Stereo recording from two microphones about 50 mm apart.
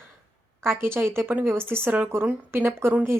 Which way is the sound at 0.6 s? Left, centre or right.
Right.